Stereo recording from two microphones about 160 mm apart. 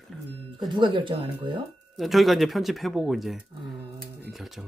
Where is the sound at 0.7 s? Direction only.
30° right (ahead or behind).